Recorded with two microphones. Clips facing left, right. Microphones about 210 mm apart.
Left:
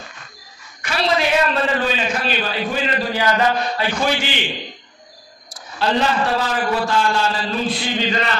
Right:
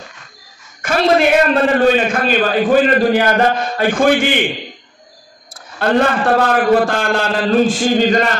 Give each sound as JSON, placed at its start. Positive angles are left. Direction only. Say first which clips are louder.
{"t": 0.8, "sound": "a man's voice", "louder": "right 7 dB", "side_deg": -50}
{"t": 5.5, "sound": "a man's voice", "louder": "right 5 dB", "side_deg": -55}